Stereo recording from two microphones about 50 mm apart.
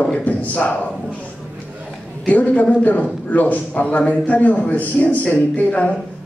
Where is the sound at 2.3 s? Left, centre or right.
Left.